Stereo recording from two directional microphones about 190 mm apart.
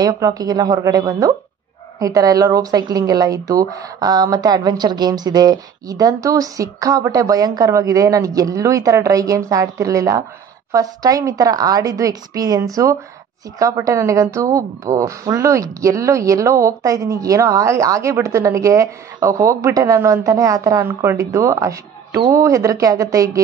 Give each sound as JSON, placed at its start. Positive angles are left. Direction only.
{"t": 0.0, "sound": "a woman's voice", "side_deg": -20}